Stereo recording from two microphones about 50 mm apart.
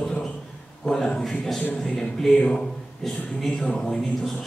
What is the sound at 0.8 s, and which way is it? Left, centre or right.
Speech, centre.